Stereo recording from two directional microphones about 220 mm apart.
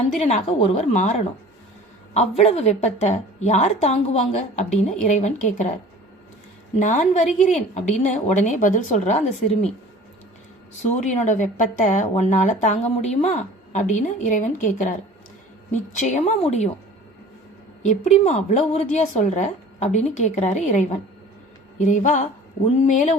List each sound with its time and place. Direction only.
0.2 s a woman's voice: 30° left (ahead or behind)
6.7 s a woman's voice: 35° left (ahead or behind)
10.9 s a woman's voice: 30° left (ahead or behind)
17.8 s a woman's voice: 30° left (ahead or behind)